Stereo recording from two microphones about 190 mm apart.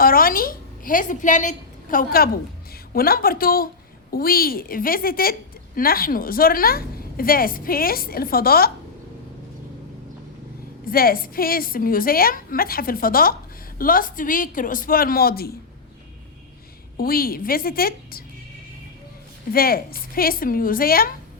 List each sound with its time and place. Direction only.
0.0 s a woman's voice: 50° left (ahead or behind)
10.8 s a woman's voice: 50° left (ahead or behind)
17.0 s a woman's voice: 50° left (ahead or behind)
19.5 s a woman's voice: 50° left (ahead or behind)